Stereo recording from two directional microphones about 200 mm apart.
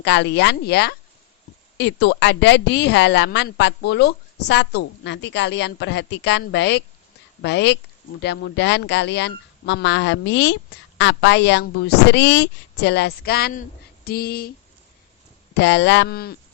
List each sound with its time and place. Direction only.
0.0 s speech: 60° left (ahead or behind)
15.5 s speech: 60° left (ahead or behind)